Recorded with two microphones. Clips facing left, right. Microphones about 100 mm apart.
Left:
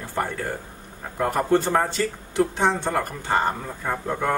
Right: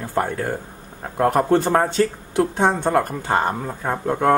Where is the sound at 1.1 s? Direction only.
55° right (ahead or behind).